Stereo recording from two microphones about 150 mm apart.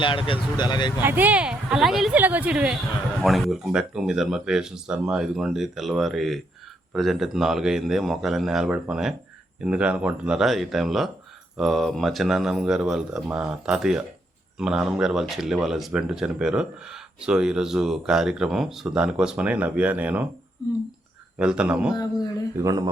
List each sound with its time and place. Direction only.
0.0 s speech: 35° left (ahead or behind)
0.9 s speech: 10° right (ahead or behind)
21.3 s speech: 5° right (ahead or behind)